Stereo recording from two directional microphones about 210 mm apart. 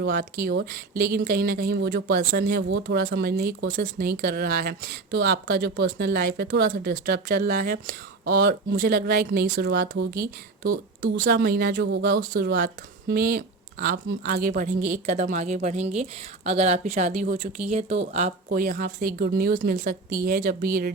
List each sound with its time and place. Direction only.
0.0 s speech: 45° right (ahead or behind)
17.7 s speech: 30° right (ahead or behind)